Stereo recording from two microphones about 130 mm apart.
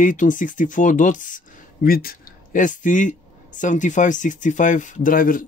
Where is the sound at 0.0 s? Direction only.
80° left.